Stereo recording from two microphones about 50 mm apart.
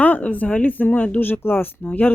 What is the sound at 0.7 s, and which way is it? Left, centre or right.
Speech, left.